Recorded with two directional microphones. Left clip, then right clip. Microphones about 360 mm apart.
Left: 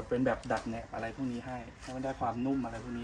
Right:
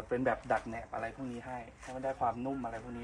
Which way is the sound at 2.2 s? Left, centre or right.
Centre.